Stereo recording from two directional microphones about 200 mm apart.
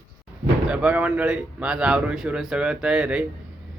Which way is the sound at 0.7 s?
5° right (ahead or behind).